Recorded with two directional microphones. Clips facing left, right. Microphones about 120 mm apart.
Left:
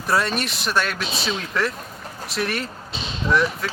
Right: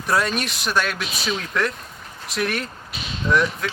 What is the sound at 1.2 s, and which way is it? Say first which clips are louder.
Speech: right 1 dB; centre (ahead or behind).